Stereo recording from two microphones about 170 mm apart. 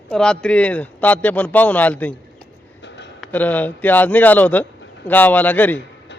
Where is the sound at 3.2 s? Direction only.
10° left (ahead or behind).